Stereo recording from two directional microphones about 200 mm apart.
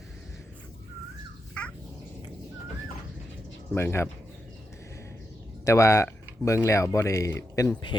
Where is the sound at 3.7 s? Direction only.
10° left (ahead or behind).